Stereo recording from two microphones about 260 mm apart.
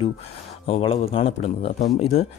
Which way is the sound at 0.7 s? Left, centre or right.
Left.